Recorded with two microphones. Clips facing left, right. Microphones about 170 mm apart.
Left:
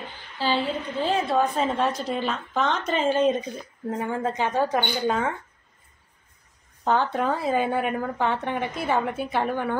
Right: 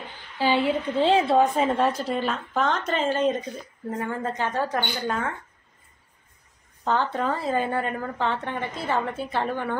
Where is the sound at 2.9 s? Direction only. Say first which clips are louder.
Left 2 dB; 15° left (ahead or behind).